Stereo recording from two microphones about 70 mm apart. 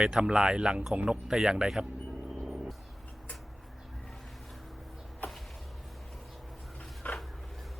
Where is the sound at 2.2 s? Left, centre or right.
Centre.